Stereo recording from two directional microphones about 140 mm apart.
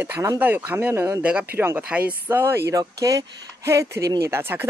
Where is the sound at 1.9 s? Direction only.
10° right (ahead or behind).